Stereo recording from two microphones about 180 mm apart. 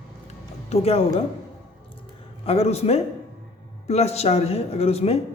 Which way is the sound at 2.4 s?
35° left (ahead or behind).